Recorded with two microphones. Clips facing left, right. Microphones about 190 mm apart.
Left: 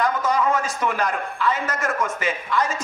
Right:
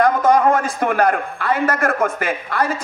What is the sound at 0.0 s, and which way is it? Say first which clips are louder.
A man's voice: right 7 dB; 55° right (ahead or behind).